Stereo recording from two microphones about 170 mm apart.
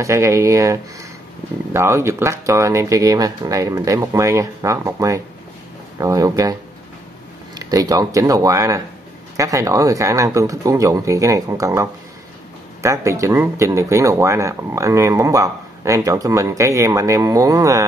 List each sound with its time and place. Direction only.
0.0 s speech: 15° right (ahead or behind)
7.5 s speech: 20° right (ahead or behind)